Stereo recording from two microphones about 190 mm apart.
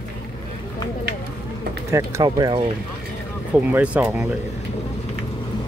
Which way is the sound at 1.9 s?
15° right (ahead or behind).